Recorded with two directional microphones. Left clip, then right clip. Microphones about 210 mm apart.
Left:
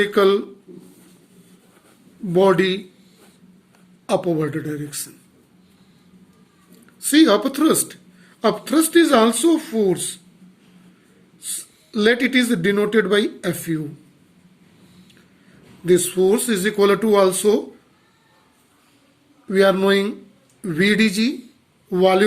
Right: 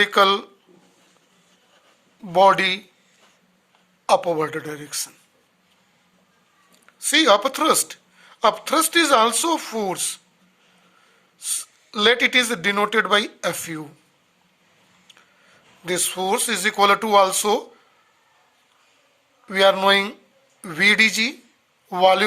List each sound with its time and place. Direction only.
0.0 s speech: 45° right (ahead or behind)
2.3 s speech: 45° right (ahead or behind)
4.0 s speech: 45° right (ahead or behind)
7.0 s speech: 40° right (ahead or behind)
11.3 s speech: 45° right (ahead or behind)
15.9 s speech: 45° right (ahead or behind)
19.5 s speech: 45° right (ahead or behind)